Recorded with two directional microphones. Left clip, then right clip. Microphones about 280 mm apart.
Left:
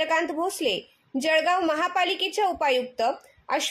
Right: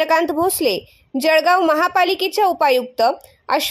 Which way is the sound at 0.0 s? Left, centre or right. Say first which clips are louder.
Right 8 dB; right.